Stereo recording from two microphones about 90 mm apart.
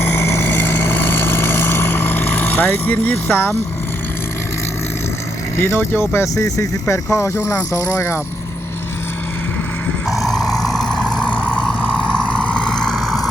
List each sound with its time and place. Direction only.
0.0 s vehicle: 25° left (ahead or behind)
5.5 s speech: 30° left (ahead or behind)
10.1 s vehicle: centre (ahead or behind)